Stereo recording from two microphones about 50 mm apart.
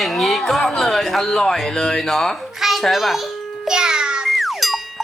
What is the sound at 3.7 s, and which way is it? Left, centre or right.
Music, centre.